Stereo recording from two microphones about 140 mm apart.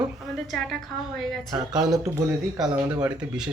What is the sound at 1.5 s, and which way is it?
Speech, 30° right (ahead or behind).